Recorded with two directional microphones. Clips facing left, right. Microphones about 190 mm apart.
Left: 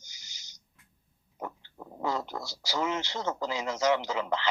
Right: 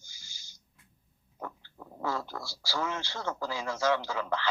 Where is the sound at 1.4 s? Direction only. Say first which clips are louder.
Left 2 dB; 15° left (ahead or behind).